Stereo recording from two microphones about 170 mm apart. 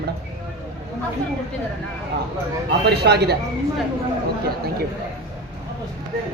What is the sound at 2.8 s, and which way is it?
Speech, 75° right (ahead or behind).